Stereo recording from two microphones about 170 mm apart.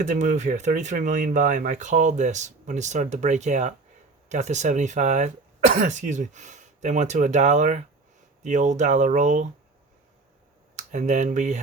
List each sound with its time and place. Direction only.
0.0 s speech: 45° right (ahead or behind)
10.8 s speech: 45° right (ahead or behind)